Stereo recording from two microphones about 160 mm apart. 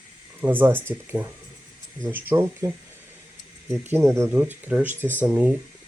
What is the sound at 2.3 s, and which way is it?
Speech, 15° right (ahead or behind).